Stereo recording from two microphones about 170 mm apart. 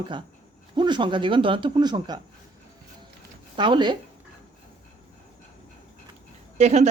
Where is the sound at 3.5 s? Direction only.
30° right (ahead or behind).